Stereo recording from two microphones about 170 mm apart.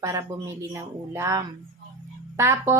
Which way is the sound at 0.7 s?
15° right (ahead or behind).